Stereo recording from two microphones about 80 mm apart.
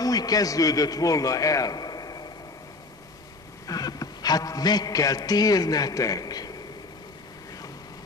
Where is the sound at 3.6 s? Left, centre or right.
Left.